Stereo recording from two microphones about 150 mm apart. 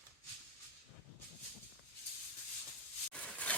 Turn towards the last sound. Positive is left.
turn(degrees=10)  # may be behind; listen again after turning